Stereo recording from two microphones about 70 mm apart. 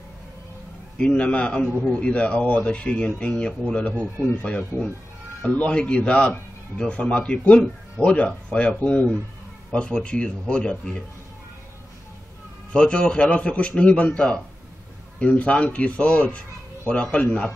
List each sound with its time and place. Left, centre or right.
0.9 s speech: centre
3.9 s speech: left
12.7 s speech: centre